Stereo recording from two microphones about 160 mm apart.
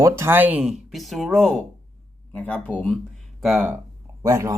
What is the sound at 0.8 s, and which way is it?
Speech, centre (ahead or behind).